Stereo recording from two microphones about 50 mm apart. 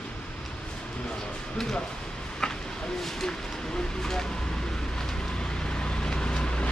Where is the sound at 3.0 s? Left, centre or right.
Centre.